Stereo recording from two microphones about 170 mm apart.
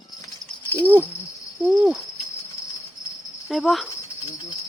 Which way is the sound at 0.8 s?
10° right (ahead or behind).